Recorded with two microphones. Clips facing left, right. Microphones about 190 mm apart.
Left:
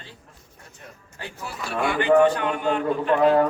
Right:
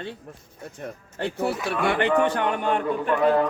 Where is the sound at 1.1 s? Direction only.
65° right (ahead or behind).